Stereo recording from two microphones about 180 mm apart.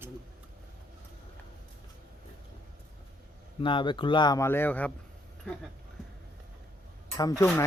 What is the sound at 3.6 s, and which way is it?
Speech, 25° left (ahead or behind).